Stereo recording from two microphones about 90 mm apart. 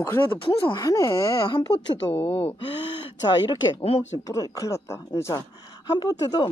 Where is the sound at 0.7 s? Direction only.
40° left (ahead or behind).